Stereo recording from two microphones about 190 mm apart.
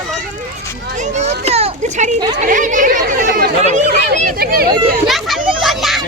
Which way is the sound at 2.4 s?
45° right (ahead or behind).